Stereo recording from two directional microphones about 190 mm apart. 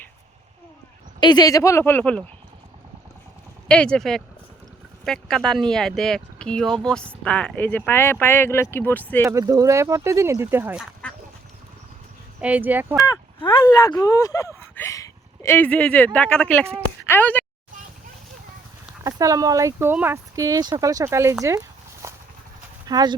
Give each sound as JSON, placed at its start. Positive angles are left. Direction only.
{"t": 1.2, "sound": "speech", "side_deg": 20}
{"t": 3.7, "sound": "speech", "side_deg": 5}
{"t": 9.2, "sound": "speech", "side_deg": -15}
{"t": 12.4, "sound": "speech", "side_deg": -10}
{"t": 13.1, "sound": "speech", "side_deg": 20}
{"t": 19.0, "sound": "speech", "side_deg": -15}
{"t": 21.4, "sound": "dog", "side_deg": -15}
{"t": 22.9, "sound": "speech", "side_deg": -20}